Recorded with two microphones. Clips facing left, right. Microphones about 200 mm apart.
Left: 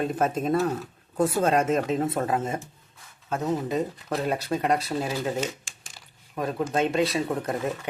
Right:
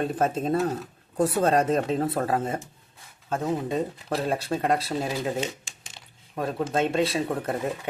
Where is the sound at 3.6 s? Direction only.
30° right (ahead or behind).